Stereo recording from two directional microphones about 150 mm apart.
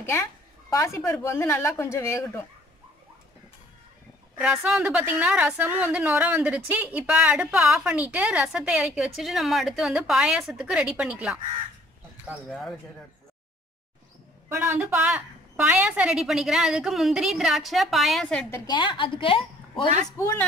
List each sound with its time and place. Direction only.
0.0 s a woman's voice: 20° left (ahead or behind)
4.4 s a woman's voice: 5° right (ahead or behind)
14.5 s a woman's voice: 15° right (ahead or behind); by 18.5 s 5° left (ahead or behind)
18.7 s a woman's voice: 30° left (ahead or behind)
20.1 s a woman's voice: 20° left (ahead or behind)